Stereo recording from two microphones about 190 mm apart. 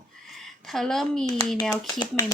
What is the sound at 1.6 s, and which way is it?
Speech, 20° left (ahead or behind).